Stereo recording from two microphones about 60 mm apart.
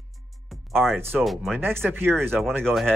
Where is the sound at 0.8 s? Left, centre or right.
Centre.